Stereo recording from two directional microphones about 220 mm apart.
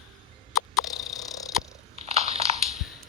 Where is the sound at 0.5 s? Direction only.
Centre (ahead or behind).